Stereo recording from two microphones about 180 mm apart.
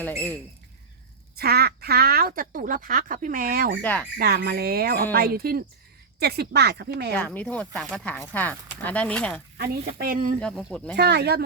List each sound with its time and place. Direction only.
1.4 s speech: 60° right (ahead or behind)
3.8 s speech: 10° left (ahead or behind)
4.2 s speech: 65° right (ahead or behind)
7.1 s speech: 5° left (ahead or behind)
10.0 s speech: 50° right (ahead or behind)
10.4 s speech: 5° left (ahead or behind)
10.9 s speech: 65° right (ahead or behind)